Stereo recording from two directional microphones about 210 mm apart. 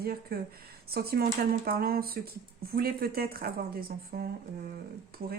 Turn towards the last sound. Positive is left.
turn(degrees=-45)  # may be behind; listen again after turning